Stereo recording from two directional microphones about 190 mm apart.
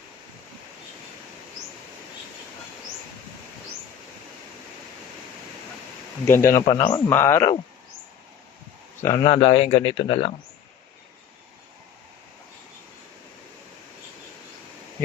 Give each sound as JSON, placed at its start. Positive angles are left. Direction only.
{"t": 6.2, "sound": "speech", "side_deg": 15}
{"t": 6.6, "sound": "a man's voice", "side_deg": 25}
{"t": 7.1, "sound": "speech", "side_deg": 15}
{"t": 9.0, "sound": "speech", "side_deg": 20}
{"t": 9.2, "sound": "speech", "side_deg": 30}